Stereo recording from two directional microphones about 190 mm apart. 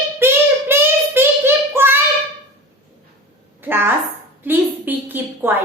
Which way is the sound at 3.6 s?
10° right (ahead or behind).